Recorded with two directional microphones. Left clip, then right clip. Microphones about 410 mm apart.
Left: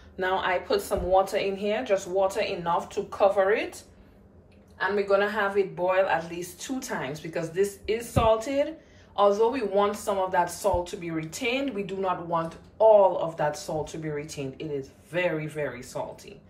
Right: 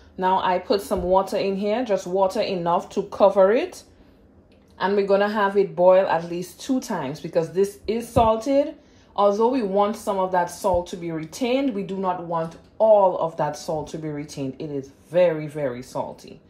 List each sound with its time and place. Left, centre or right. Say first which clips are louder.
0.2 s speech: right 5 dB; centre
4.9 s speech: right 4 dB; centre